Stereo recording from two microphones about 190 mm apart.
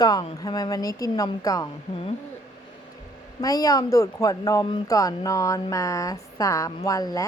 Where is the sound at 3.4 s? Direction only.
20° left (ahead or behind).